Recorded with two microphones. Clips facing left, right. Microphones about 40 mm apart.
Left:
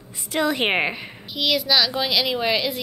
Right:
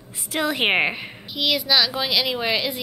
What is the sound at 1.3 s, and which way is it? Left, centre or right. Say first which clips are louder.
A woman's voice: even; centre.